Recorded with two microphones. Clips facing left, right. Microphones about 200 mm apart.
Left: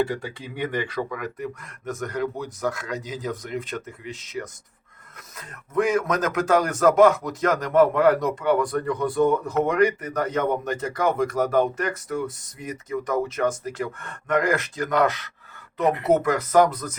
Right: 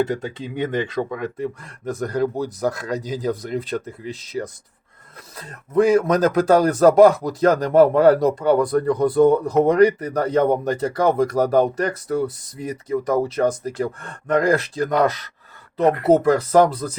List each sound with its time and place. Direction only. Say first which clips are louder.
0.0 s speech: right 3 dB; 20° right (ahead or behind)